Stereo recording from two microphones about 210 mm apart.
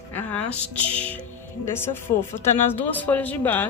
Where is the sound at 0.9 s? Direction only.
5° left (ahead or behind).